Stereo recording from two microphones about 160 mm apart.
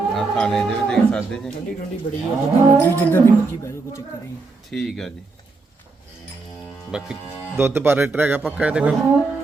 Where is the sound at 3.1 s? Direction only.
15° left (ahead or behind).